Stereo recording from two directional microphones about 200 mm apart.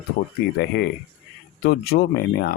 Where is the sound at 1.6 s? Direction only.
50° left (ahead or behind).